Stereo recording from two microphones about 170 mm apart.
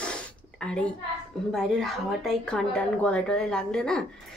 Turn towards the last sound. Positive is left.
turn(degrees=5)  # may be behind; listen again after turning